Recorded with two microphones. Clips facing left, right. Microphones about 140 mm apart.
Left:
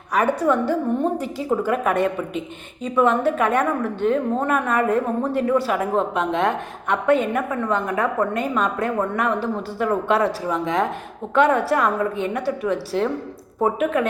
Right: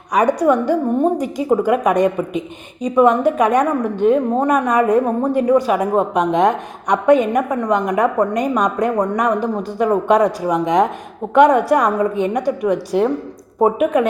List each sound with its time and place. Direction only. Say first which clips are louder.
0.1 s a woman's voice: right 5 dB; 15° right (ahead or behind)